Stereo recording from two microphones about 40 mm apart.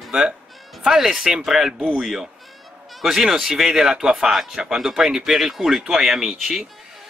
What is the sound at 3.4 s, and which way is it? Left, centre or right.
Speech, centre.